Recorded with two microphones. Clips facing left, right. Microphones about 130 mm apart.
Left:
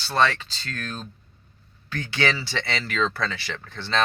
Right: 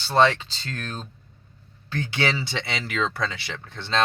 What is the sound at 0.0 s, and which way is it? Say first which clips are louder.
Speech: right 3 dB; 20° right (ahead or behind).